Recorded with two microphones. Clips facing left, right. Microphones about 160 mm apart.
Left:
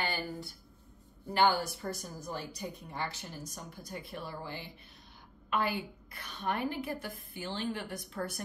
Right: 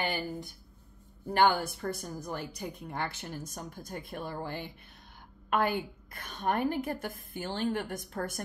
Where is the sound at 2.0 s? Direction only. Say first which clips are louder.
Right 3 dB; 55° right (ahead or behind).